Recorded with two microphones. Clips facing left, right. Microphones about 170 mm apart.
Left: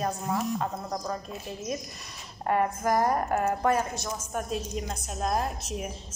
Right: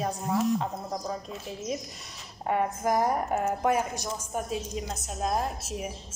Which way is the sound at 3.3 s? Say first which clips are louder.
Left 1 dB; 15° right (ahead or behind).